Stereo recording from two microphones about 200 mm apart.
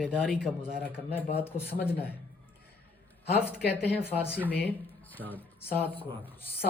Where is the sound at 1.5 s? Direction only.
40° left (ahead or behind).